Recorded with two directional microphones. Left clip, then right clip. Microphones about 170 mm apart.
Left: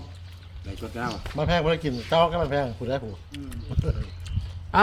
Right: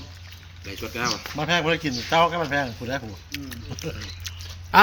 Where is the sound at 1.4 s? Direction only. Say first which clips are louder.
Even; 90° left.